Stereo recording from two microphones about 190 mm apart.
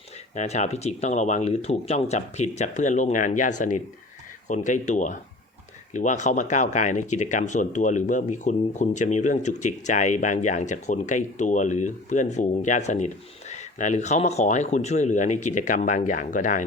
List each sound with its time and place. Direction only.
0.3 s speech: 35° left (ahead or behind)